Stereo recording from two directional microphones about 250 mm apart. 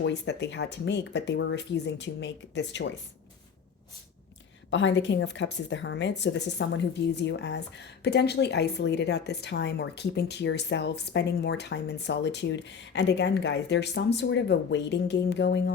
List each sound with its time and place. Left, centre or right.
0.0 s a woman's voice: left
4.7 s a woman's voice: left